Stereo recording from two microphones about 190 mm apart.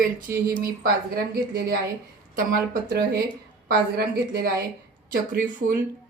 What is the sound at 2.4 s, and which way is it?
A woman's voice, 50° right (ahead or behind).